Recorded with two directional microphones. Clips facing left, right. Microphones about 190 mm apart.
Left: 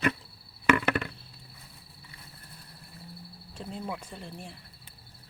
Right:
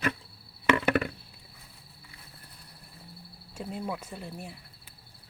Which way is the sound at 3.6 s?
10° right (ahead or behind).